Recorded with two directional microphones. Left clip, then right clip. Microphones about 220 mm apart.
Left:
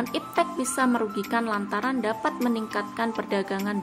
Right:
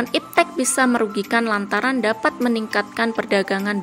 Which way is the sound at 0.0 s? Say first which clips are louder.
Right 7 dB; 20° right (ahead or behind).